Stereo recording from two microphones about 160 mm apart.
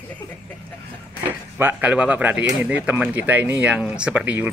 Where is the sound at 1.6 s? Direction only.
10° right (ahead or behind).